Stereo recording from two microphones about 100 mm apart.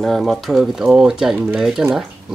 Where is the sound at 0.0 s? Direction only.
Centre (ahead or behind).